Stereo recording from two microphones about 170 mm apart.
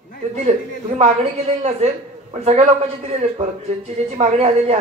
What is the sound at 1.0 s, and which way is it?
A woman's voice, 40° right (ahead or behind).